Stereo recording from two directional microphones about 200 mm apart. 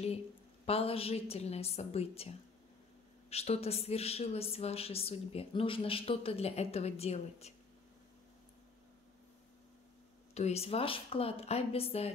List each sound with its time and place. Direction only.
0.7 s a woman's voice: 30° left (ahead or behind)
10.3 s a woman's voice: 30° left (ahead or behind)